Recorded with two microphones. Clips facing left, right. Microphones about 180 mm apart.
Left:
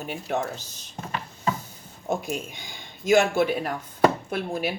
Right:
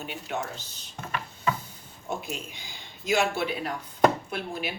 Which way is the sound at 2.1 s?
50° left (ahead or behind).